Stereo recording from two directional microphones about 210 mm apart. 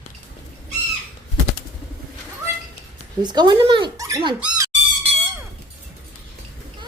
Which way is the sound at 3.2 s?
20° right (ahead or behind).